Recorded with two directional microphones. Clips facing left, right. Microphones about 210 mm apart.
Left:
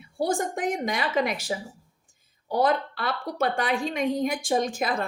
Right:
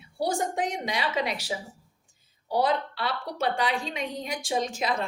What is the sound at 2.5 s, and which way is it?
A woman's voice, 50° left (ahead or behind).